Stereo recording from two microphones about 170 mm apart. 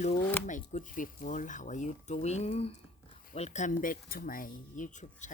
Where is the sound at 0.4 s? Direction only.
50° left (ahead or behind).